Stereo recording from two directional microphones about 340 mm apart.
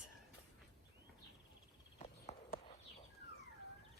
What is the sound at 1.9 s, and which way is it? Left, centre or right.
Horse, centre.